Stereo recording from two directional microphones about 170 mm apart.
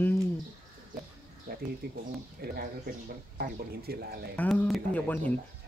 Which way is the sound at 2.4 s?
60° right (ahead or behind).